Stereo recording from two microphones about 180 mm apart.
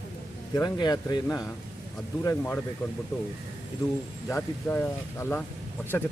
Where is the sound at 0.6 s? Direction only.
20° left (ahead or behind).